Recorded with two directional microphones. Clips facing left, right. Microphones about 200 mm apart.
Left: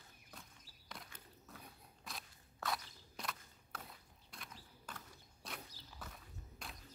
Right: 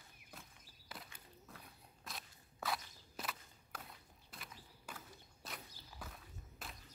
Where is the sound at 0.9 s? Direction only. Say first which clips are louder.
Even; 5° right (ahead or behind).